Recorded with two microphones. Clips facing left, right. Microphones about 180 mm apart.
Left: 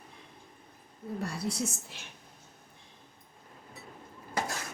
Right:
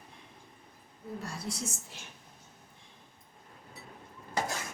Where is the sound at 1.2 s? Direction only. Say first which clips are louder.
Left 6 dB; 65° left (ahead or behind).